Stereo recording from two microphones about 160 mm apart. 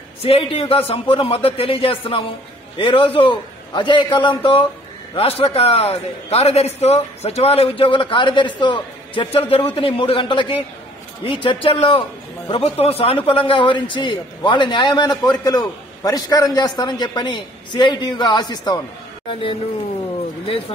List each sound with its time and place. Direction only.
0.2 s a man's voice: 40° left (ahead or behind)